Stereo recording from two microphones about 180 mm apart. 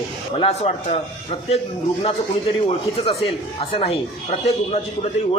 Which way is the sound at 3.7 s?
35° left (ahead or behind).